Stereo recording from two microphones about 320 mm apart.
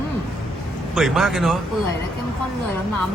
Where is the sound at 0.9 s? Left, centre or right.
Centre.